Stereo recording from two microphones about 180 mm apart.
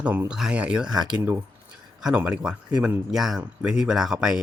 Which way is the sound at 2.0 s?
5° right (ahead or behind).